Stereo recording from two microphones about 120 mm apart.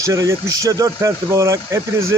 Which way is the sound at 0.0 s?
25° right (ahead or behind).